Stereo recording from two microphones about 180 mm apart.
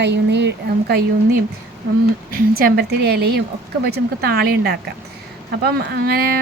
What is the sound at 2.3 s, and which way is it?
Speech, 55° right (ahead or behind).